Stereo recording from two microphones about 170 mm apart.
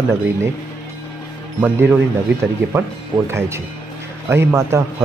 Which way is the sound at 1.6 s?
10° right (ahead or behind).